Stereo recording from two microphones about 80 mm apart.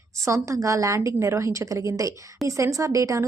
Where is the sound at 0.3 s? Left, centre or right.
Right.